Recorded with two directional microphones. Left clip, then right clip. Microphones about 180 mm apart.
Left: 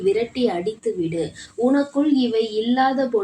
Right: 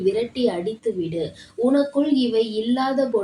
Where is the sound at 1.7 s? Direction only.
25° left (ahead or behind).